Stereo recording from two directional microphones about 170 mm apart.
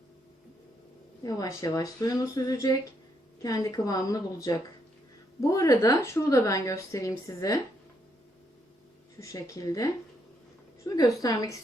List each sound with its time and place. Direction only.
1.2 s a woman's voice: 20° left (ahead or behind)
9.2 s a woman's voice: 20° left (ahead or behind)